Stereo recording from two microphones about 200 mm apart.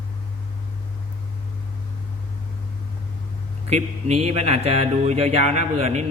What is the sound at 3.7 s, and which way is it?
A man's voice, 35° right (ahead or behind).